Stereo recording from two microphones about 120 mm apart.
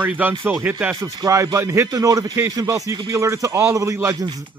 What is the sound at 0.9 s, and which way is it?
A man's voice, 30° right (ahead or behind).